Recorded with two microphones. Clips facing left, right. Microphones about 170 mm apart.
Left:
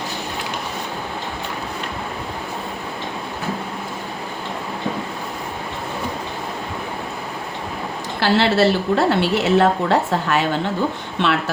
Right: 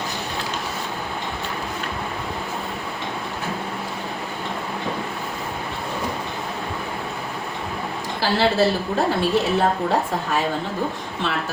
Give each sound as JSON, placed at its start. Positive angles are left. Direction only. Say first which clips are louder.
{"t": 8.2, "sound": "a woman's voice", "louder": "left 3 dB", "side_deg": 75}